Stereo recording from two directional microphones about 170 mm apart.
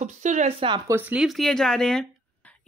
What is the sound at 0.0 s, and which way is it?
Speech, 45° right (ahead or behind).